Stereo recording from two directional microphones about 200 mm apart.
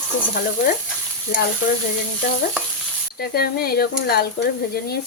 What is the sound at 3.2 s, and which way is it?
Speech, 50° left (ahead or behind).